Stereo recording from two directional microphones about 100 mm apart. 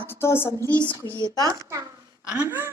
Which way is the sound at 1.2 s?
40° left (ahead or behind).